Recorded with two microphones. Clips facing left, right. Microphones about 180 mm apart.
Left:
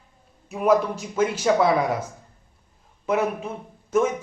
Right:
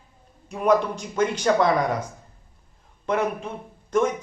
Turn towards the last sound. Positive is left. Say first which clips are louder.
# left 1 dB
turn(degrees=5)  # may be behind; listen again after turning